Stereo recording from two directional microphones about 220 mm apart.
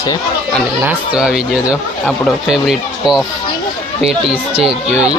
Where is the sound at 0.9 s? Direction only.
5° right (ahead or behind).